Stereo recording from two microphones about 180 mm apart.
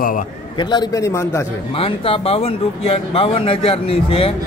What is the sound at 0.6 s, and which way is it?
Speech, 25° left (ahead or behind).